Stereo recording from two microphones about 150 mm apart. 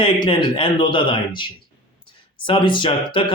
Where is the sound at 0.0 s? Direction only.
35° left (ahead or behind).